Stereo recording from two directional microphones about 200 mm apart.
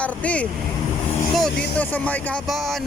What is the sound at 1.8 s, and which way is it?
Speech, 5° left (ahead or behind).